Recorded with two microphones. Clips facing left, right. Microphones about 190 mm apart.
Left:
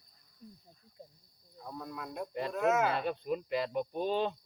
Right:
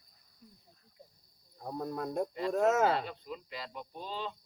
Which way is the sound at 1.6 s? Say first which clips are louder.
Right 6 dB; 40° right (ahead or behind).